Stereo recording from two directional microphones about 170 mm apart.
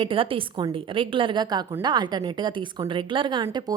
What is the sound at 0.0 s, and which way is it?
A woman's voice, 30° right (ahead or behind).